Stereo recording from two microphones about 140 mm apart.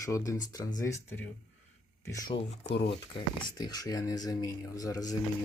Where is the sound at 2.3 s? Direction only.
35° left (ahead or behind).